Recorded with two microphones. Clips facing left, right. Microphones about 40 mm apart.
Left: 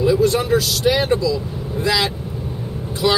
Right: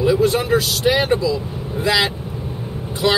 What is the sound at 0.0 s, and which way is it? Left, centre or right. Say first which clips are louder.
Speech: even; right.